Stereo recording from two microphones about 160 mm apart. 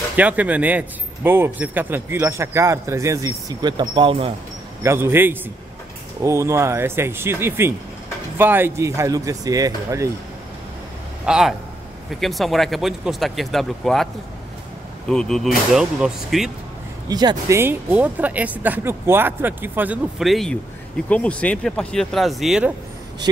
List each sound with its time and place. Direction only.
0.1 s speech: 10° right (ahead or behind); by 4.3 s 35° right (ahead or behind)
4.8 s speech: 15° right (ahead or behind)
11.2 s speech: 5° right (ahead or behind)
15.0 s speech: 5° left (ahead or behind)
17.1 s speech: 25° right (ahead or behind); by 22.7 s centre (ahead or behind)